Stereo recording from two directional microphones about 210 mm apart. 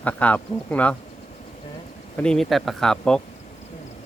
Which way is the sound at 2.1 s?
5° left (ahead or behind).